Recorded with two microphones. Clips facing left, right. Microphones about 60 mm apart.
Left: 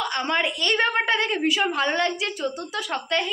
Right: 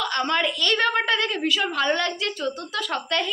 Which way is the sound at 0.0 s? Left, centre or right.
Centre.